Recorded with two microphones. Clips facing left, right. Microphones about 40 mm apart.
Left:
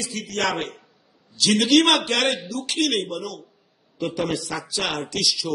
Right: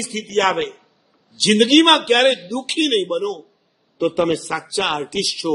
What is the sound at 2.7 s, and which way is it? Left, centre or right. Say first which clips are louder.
Speech: right 5 dB; right.